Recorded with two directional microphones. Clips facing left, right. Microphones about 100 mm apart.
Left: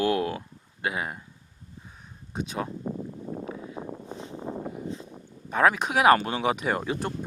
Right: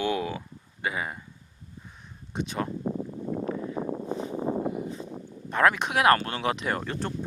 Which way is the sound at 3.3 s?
80° right.